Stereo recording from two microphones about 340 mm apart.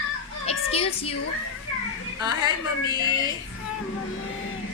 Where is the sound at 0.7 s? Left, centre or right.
Centre.